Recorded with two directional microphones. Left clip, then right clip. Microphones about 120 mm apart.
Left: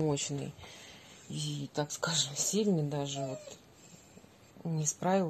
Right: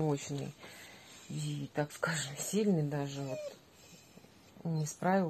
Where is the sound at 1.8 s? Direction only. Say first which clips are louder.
Left 2 dB; 25° right (ahead or behind).